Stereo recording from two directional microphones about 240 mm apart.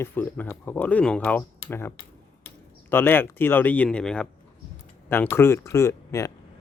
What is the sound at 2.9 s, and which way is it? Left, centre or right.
Speech, centre.